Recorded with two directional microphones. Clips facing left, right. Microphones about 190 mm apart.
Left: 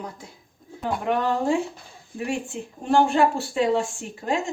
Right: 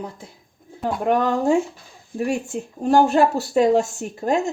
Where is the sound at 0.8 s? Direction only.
45° right (ahead or behind).